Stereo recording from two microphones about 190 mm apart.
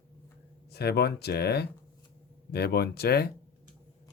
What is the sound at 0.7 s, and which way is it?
Speech, 60° left (ahead or behind).